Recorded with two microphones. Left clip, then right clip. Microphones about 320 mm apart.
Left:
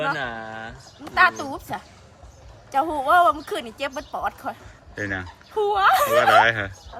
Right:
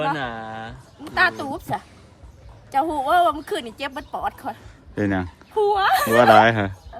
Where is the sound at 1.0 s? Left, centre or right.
Centre.